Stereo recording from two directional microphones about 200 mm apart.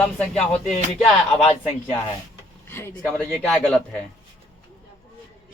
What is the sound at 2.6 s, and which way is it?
Speech, 10° left (ahead or behind).